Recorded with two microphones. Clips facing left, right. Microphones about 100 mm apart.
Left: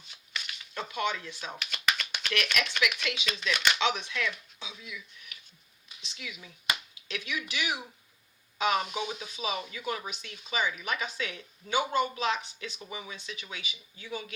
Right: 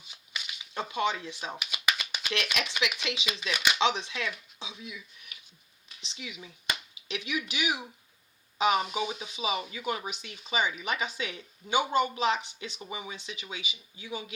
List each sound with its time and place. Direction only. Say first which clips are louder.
0.1 s a sound: left 1 dB; 10° right (ahead or behind)
0.7 s speech: right 2 dB; 25° right (ahead or behind)
1.7 s a sound: left 2 dB; 10° right (ahead or behind)
2.3 s speech: left 1 dB; 20° right (ahead or behind)
3.2 s speech: left 1 dB; 10° right (ahead or behind)
3.8 s speech: right 2 dB; 25° right (ahead or behind)
6.0 s speech: right 1 dB; 25° right (ahead or behind)
8.8 s speech: right 2 dB; 5° right (ahead or behind)
9.1 s speech: right 2 dB; 20° right (ahead or behind)